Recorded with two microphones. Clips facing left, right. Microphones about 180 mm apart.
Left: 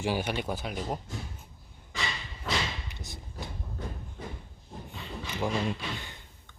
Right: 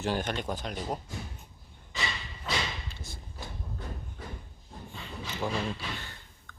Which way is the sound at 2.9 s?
20° left (ahead or behind).